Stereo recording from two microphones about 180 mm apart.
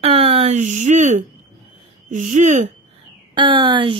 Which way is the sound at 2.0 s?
45° right (ahead or behind).